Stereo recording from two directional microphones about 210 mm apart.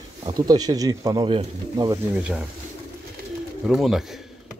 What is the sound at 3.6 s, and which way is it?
Speech, centre (ahead or behind).